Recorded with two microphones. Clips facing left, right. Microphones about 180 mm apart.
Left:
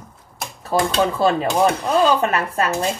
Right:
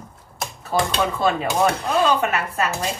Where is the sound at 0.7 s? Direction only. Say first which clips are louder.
Left 3 dB; 35° left (ahead or behind).